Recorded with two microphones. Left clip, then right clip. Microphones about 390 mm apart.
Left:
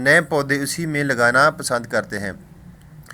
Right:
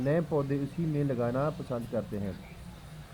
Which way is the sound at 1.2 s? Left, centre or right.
Left.